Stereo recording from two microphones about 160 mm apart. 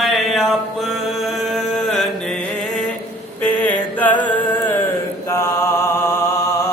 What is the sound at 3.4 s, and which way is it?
Music, 10° left (ahead or behind).